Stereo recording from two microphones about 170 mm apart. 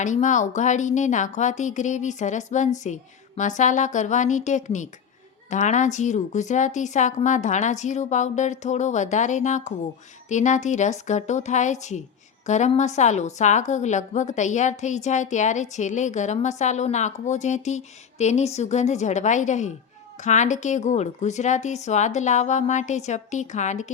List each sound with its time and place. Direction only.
0.0 s a woman's voice: 45° left (ahead or behind)